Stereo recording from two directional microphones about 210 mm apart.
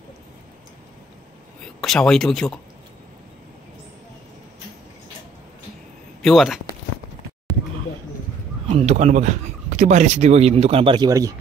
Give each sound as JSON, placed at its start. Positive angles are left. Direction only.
{"t": 1.8, "sound": "speech", "side_deg": 0}
{"t": 6.2, "sound": "speech", "side_deg": 0}
{"t": 8.6, "sound": "speech", "side_deg": -30}